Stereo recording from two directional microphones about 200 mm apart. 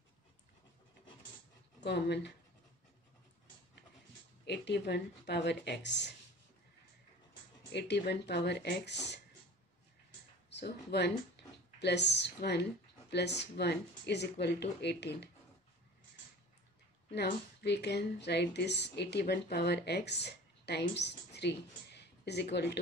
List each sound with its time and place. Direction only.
1.8 s speech: 60° left (ahead or behind)
4.5 s speech: 55° left (ahead or behind)
7.7 s speech: 55° left (ahead or behind)
10.5 s speech: 55° left (ahead or behind)
17.1 s speech: 55° left (ahead or behind)